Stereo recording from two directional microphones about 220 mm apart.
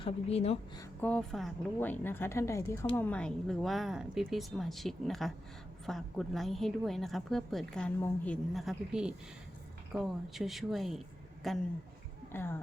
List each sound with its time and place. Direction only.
0.0 s speech: 25° left (ahead or behind)
0.8 s a woman's voice: 5° left (ahead or behind)